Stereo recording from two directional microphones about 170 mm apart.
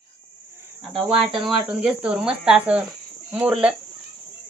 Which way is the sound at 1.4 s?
Centre (ahead or behind).